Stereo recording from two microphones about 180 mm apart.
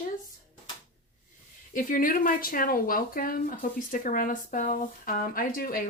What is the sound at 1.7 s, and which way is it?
Speech, 50° left (ahead or behind).